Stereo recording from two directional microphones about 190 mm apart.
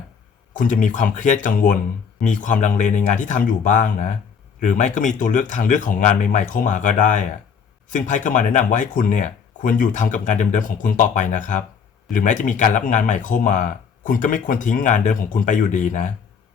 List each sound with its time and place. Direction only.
0.5 s speech: 40° left (ahead or behind)